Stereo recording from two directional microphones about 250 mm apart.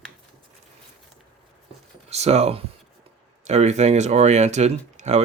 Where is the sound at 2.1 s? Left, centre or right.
Right.